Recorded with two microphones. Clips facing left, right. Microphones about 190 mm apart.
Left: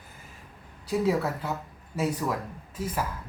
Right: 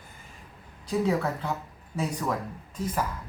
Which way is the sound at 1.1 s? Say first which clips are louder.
Left 1 dB; 5° left (ahead or behind).